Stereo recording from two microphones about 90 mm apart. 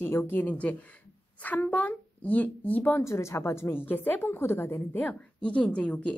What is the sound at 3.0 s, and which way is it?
A woman's voice, 30° left (ahead or behind).